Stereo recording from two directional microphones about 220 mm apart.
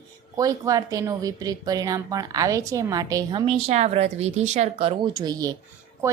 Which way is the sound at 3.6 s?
30° right (ahead or behind).